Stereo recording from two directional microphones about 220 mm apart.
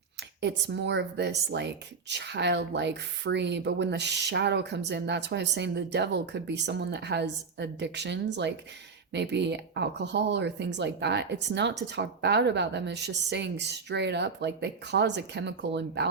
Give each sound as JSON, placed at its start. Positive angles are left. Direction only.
{"t": 0.4, "sound": "speech", "side_deg": -50}